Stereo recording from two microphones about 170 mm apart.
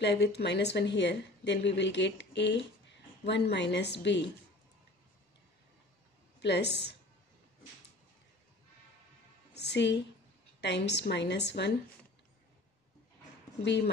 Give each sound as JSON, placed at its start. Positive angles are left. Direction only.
{"t": 0.0, "sound": "speech", "side_deg": 80}
{"t": 6.4, "sound": "a woman's voice", "side_deg": 85}
{"t": 9.5, "sound": "a woman's voice", "side_deg": 80}